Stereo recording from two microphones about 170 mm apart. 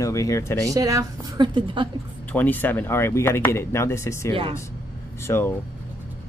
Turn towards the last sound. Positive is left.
turn(degrees=15)  # may be behind; listen again after turning